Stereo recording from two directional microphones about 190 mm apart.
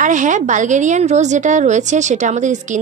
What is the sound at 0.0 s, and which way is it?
A woman's voice, 40° right (ahead or behind).